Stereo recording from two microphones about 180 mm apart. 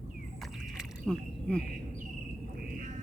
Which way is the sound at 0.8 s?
5° left (ahead or behind).